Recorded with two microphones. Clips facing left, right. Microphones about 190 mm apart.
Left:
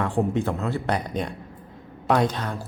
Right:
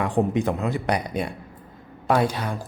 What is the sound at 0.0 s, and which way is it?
Speech, 15° right (ahead or behind).